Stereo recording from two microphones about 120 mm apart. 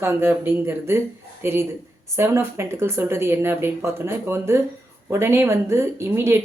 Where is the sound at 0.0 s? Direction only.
20° right (ahead or behind).